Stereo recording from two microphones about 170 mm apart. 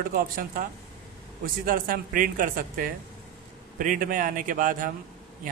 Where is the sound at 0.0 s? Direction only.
60° right (ahead or behind).